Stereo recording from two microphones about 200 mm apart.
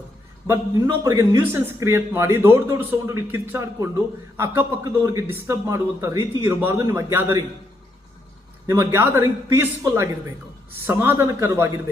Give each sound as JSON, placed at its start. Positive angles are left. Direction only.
{"t": 0.4, "sound": "a man's voice", "side_deg": -15}
{"t": 8.6, "sound": "a man's voice", "side_deg": -10}